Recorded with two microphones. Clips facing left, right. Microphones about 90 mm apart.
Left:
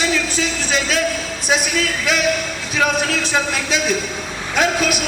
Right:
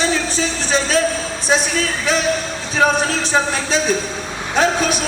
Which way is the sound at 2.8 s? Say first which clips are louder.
Right 3 dB; 35° right (ahead or behind).